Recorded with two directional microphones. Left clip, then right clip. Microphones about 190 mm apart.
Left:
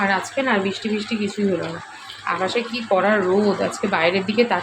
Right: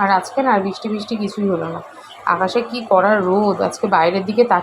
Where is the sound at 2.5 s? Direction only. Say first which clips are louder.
Right 4 dB; 15° right (ahead or behind).